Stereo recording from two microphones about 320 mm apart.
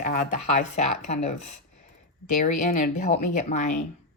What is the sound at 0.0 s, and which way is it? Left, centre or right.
Speech, left.